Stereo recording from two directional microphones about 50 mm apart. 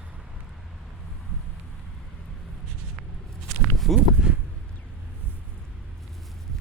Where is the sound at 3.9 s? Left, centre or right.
Centre.